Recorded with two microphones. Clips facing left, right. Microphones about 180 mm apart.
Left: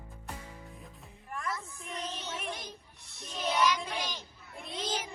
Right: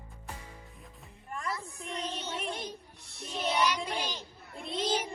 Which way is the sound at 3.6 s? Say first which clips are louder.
Left 1 dB; 35° right (ahead or behind).